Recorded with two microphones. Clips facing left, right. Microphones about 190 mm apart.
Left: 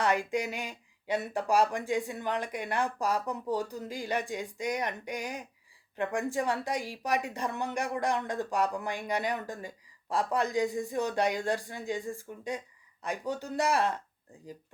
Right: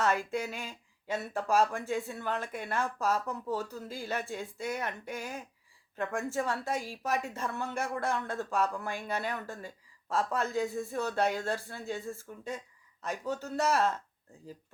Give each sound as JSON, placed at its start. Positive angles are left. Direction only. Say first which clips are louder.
{"t": 0.0, "sound": "a woman's voice", "louder": "left 2 dB", "side_deg": 15}